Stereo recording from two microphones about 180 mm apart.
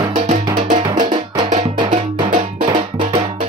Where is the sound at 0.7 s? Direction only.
45° right (ahead or behind).